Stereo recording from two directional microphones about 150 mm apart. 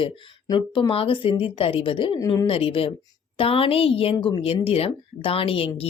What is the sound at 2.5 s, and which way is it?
A woman's voice, 40° left (ahead or behind).